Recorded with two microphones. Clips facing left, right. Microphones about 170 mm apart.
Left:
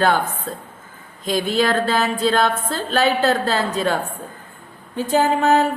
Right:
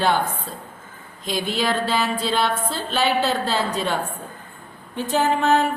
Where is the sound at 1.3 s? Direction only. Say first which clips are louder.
Left 4 dB; 50° left (ahead or behind).